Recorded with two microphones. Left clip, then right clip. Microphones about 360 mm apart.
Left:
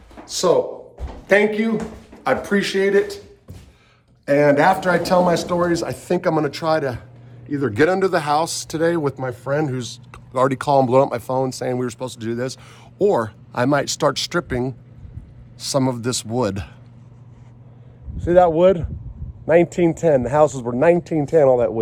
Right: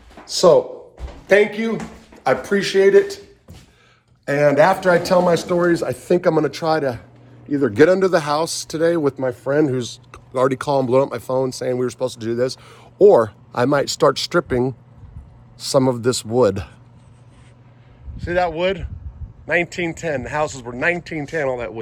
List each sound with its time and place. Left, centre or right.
0.3 s speech: centre
4.3 s speech: centre
18.2 s a man's voice: centre